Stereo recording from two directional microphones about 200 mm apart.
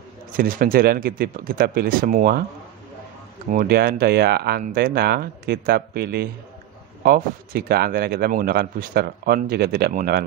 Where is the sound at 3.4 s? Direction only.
50° right (ahead or behind).